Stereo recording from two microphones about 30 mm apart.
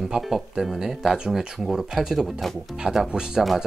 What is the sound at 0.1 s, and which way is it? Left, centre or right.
Speech, centre.